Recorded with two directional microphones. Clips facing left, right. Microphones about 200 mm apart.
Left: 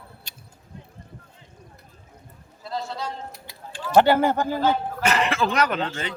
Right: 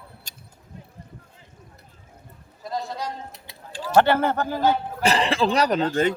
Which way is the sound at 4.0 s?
15° left (ahead or behind).